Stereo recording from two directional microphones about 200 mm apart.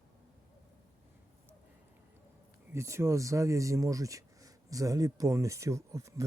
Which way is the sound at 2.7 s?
15° right (ahead or behind).